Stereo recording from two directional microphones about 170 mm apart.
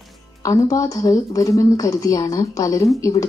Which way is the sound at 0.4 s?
20° left (ahead or behind).